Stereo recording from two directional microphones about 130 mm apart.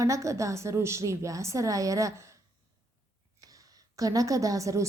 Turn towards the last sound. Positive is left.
turn(degrees=-25)  # may be behind; listen again after turning